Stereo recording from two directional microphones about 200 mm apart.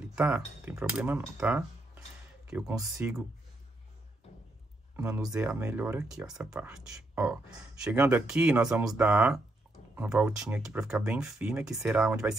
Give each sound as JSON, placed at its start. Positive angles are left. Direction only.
{"t": 0.0, "sound": "a sound", "side_deg": -5}
{"t": 0.7, "sound": "speech", "side_deg": -10}
{"t": 4.9, "sound": "speech", "side_deg": -5}